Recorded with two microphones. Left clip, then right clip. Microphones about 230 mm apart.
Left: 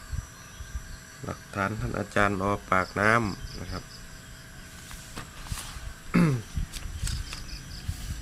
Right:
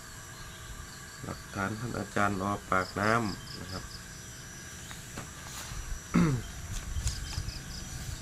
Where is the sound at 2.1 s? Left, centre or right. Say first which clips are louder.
Left 5 dB; left.